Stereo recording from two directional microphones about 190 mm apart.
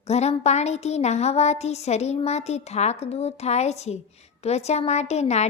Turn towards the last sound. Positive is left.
turn(degrees=35)  # may be behind; listen again after turning